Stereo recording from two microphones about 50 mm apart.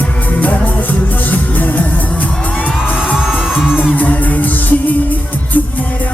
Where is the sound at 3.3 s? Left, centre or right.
Centre.